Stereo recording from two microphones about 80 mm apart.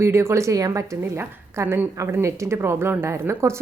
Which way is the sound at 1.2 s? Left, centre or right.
Right.